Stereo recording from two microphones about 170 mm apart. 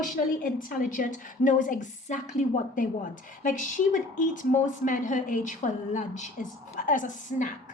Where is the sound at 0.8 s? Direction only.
50° left (ahead or behind).